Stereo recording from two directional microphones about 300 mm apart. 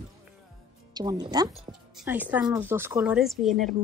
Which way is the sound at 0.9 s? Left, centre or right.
Centre.